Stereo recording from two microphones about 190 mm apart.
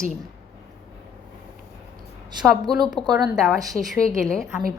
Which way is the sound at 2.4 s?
Centre (ahead or behind).